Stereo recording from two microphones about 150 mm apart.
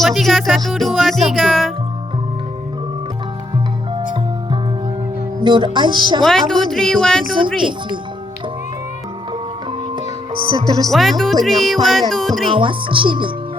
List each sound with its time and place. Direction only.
0.0 s music: centre (ahead or behind)
5.4 s speech: 30° right (ahead or behind)
6.2 s music: 5° left (ahead or behind)
7.3 s speech: 35° right (ahead or behind)
10.8 s music: centre (ahead or behind)
12.5 s speech: 35° right (ahead or behind)